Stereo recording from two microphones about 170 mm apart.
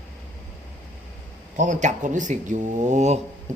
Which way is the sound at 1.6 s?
45° right (ahead or behind).